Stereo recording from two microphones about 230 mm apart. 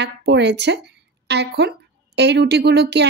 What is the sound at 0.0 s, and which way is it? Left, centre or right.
A woman's voice, right.